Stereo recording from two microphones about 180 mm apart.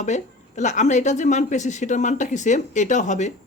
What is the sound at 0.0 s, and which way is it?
Speech, 40° left (ahead or behind).